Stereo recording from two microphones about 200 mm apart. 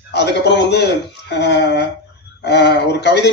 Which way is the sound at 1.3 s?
60° left (ahead or behind).